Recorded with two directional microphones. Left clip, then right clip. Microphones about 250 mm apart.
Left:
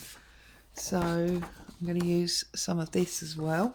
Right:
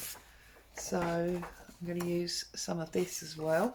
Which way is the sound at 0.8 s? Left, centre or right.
Left.